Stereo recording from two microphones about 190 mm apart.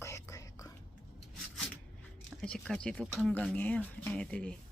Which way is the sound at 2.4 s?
5° left (ahead or behind).